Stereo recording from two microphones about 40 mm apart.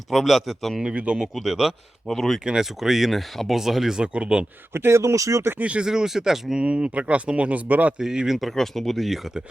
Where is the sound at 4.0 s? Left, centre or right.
Right.